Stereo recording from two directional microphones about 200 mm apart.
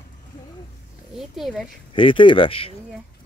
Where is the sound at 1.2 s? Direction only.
Centre (ahead or behind).